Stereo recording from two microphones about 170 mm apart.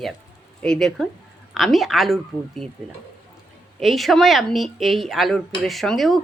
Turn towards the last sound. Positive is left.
turn(degrees=0)  # may be behind; listen again after turning